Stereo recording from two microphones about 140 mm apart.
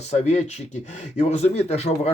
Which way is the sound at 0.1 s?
55° left (ahead or behind).